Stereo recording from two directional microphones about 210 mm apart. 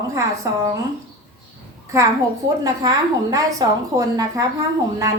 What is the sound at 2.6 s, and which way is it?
A woman's voice, 15° right (ahead or behind).